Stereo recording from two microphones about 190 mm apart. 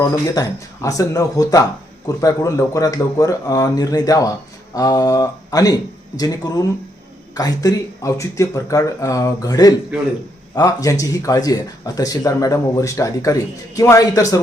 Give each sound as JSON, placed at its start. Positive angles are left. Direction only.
{"t": 0.0, "sound": "speech", "side_deg": 20}